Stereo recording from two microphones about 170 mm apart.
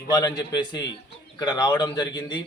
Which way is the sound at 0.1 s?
25° left (ahead or behind).